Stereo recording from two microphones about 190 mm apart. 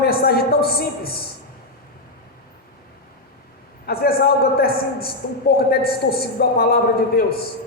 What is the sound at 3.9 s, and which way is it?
A man's voice, 55° left (ahead or behind).